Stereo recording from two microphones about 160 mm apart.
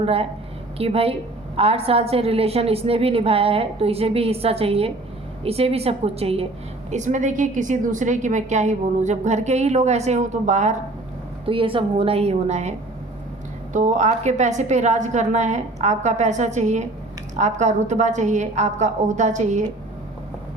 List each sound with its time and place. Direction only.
0.0 s a woman's voice: 35° right (ahead or behind)
6.9 s a woman's voice: 50° right (ahead or behind)
11.4 s a woman's voice: 35° right (ahead or behind)
13.7 s a woman's voice: 50° right (ahead or behind)